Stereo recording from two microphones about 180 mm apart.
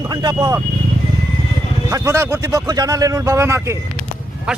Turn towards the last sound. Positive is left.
turn(degrees=-15)  # may be behind; listen again after turning